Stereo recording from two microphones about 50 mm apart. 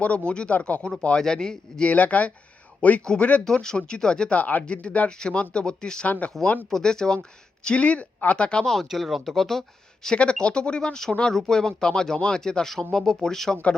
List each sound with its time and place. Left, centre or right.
0.3 s speech: left
1.9 s speech: left
3.0 s speech: centre
6.1 s speech: left
6.7 s speech: centre
8.6 s speech: centre
10.2 s speech: left